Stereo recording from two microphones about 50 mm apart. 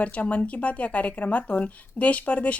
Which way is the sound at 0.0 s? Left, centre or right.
Left.